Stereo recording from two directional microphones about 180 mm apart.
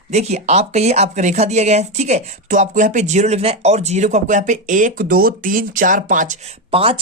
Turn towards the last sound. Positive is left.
turn(degrees=-30)  # may be behind; listen again after turning